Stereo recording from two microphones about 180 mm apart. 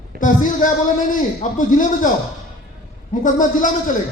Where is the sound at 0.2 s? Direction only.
45° left (ahead or behind).